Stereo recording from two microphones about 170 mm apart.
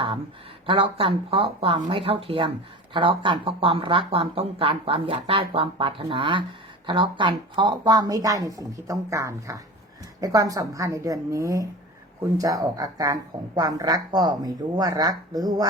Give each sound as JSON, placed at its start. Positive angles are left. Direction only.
{"t": 0.7, "sound": "speech", "side_deg": -30}